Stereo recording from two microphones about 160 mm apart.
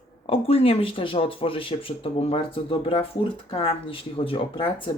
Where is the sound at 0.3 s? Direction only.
35° left (ahead or behind).